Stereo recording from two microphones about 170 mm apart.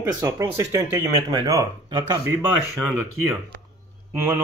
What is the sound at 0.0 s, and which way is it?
Speech, 20° right (ahead or behind).